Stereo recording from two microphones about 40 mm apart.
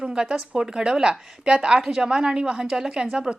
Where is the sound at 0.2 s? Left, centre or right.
Centre.